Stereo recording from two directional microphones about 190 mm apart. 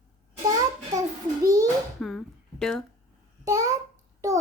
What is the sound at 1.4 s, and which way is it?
Speech, 20° right (ahead or behind).